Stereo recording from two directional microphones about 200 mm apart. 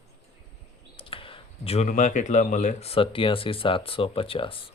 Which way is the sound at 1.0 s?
25° left (ahead or behind).